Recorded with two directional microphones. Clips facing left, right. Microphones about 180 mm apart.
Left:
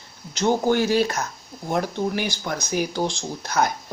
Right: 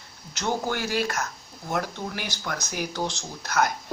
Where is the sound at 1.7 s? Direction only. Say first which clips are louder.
Left 6 dB; 20° left (ahead or behind).